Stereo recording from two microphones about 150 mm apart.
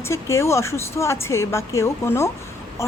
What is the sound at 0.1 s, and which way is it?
A woman's voice, 20° left (ahead or behind).